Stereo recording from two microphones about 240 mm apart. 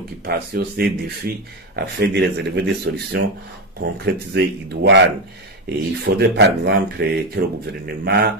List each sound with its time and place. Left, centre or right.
0.2 s speech: right